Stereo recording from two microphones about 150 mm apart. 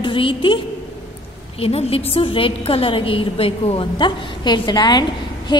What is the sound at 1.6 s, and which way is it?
A woman's voice, 40° left (ahead or behind).